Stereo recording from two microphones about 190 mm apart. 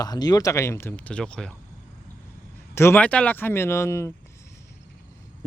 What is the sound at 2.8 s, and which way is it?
Speech, 10° left (ahead or behind).